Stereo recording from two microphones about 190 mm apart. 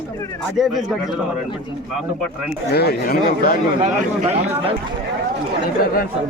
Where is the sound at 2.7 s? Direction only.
55° left (ahead or behind).